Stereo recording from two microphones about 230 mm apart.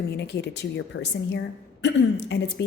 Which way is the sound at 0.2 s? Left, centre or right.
Left.